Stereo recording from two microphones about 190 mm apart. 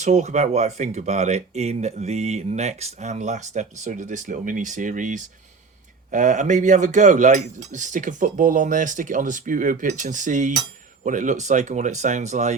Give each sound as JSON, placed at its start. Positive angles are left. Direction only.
{"t": 0.0, "sound": "speech", "side_deg": -40}